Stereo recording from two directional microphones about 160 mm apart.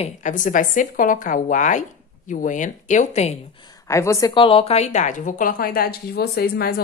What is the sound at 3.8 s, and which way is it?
Speech, 20° left (ahead or behind).